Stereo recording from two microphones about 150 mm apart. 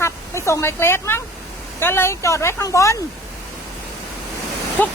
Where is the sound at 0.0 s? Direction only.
20° left (ahead or behind).